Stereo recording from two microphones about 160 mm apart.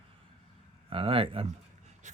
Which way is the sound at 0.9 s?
35° right (ahead or behind).